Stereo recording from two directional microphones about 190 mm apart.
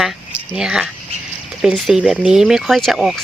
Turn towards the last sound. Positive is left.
turn(degrees=0)  # may be behind; listen again after turning